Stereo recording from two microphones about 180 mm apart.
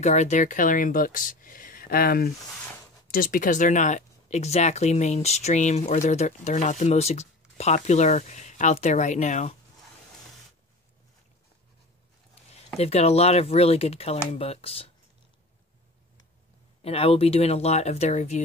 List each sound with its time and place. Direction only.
0.0 s speech: 40° left (ahead or behind)
12.7 s speech: 35° left (ahead or behind)
16.8 s speech: 30° left (ahead or behind)